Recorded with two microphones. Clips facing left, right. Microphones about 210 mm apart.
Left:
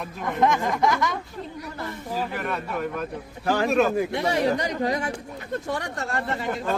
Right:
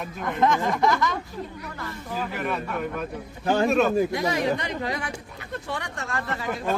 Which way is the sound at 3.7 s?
Centre (ahead or behind).